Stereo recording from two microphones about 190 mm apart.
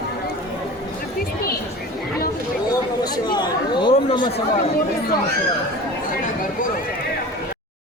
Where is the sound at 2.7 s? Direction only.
20° left (ahead or behind).